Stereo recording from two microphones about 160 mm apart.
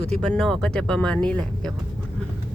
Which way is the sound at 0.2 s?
5° left (ahead or behind).